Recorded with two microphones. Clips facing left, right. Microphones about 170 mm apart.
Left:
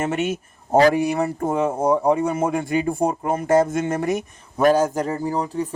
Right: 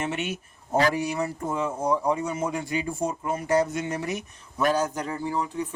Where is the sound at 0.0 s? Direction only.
45° left (ahead or behind).